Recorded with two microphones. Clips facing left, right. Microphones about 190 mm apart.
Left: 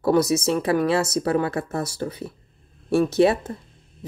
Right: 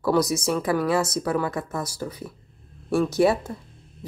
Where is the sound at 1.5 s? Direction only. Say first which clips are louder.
Left 3 dB; 65° left (ahead or behind).